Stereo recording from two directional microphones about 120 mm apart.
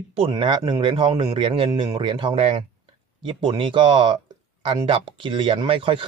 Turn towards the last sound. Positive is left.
turn(degrees=-45)  # may be behind; listen again after turning